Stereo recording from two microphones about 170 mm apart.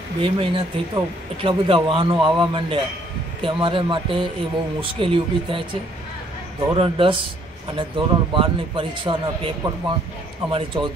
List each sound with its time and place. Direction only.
0.2 s a man's voice: 30° right (ahead or behind)